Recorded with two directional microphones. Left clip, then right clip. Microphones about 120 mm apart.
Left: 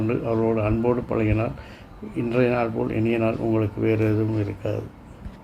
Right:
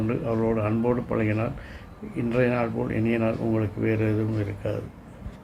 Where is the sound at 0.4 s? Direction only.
25° left (ahead or behind).